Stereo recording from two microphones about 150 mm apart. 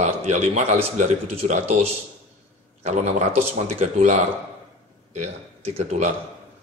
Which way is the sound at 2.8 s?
50° right (ahead or behind).